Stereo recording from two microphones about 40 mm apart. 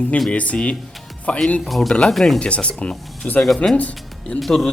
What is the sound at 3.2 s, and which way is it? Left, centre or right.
Speech, left.